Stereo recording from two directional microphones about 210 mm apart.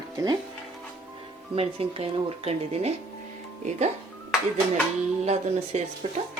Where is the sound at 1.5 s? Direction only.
25° right (ahead or behind).